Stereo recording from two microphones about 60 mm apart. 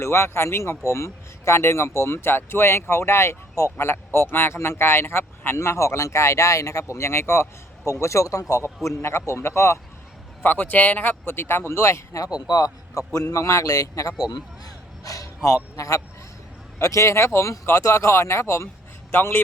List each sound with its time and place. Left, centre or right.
0.0 s speech: left
5.5 s speech: left
8.0 s speech: left
9.0 s speech: left
10.4 s speech: left
11.7 s speech: left
12.2 s a man's voice: left
13.1 s a man's voice: left
19.1 s speech: left